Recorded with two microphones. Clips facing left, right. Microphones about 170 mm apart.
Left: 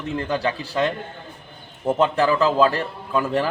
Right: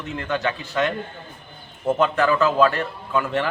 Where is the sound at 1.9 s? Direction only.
30° left (ahead or behind).